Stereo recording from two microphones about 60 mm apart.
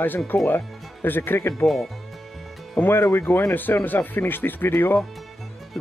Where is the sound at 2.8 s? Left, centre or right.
Left.